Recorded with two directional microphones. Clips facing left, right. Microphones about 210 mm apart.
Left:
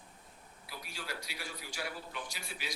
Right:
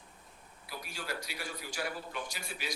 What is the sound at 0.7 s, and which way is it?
A man's voice, 50° right (ahead or behind).